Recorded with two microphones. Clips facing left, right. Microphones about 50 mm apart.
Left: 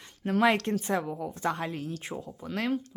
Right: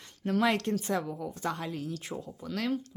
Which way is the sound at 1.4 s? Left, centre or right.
Left.